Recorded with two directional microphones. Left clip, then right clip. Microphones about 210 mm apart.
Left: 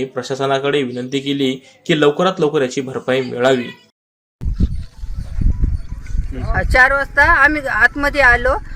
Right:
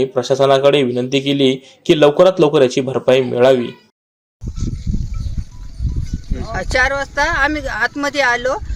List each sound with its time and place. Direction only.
0.0 s speech: 20° right (ahead or behind)
6.5 s speech: centre (ahead or behind)